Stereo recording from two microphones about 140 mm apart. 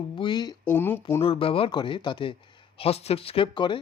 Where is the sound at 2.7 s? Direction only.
45° left (ahead or behind).